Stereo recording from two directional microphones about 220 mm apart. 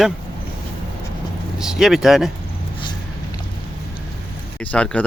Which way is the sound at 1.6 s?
Centre (ahead or behind).